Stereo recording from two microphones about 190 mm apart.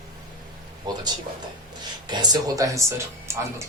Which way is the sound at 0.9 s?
20° right (ahead or behind).